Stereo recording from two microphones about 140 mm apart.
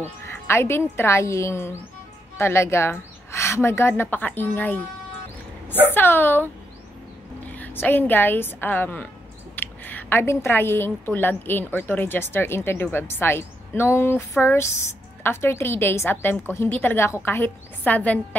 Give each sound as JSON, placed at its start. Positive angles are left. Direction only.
{"t": 0.0, "sound": "a woman's voice", "side_deg": 15}
{"t": 5.9, "sound": "a woman's voice", "side_deg": 15}